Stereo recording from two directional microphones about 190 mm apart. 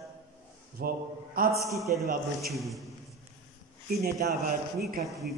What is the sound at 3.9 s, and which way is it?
Speech, 55° right (ahead or behind).